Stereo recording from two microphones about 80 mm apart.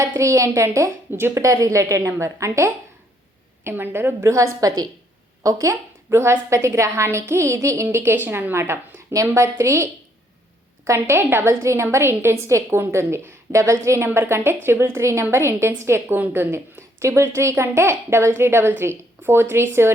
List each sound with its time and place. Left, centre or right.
0.2 s a woman's voice: right
1.4 s a woman's voice: right
3.6 s a woman's voice: right
4.2 s a woman's voice: right
7.9 s a woman's voice: right